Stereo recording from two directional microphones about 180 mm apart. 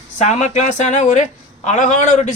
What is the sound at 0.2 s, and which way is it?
A man's voice, 40° left (ahead or behind).